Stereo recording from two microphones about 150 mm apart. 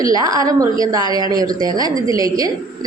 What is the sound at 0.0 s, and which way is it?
A woman's voice, 25° right (ahead or behind).